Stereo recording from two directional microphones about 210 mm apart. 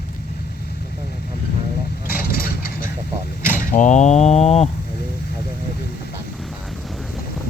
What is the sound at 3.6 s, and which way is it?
Speech, 40° left (ahead or behind).